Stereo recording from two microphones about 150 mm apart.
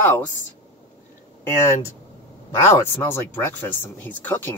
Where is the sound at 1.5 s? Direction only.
15° left (ahead or behind).